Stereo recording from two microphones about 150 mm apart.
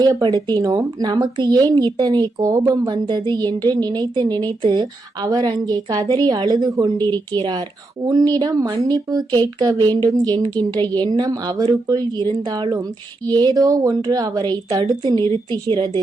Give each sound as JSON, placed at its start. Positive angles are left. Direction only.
{"t": 0.0, "sound": "a woman's voice", "side_deg": -25}